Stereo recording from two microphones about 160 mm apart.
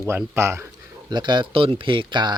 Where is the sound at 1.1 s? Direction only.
30° right (ahead or behind).